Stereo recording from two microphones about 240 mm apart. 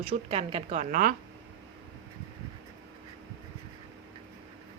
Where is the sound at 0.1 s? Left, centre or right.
Right.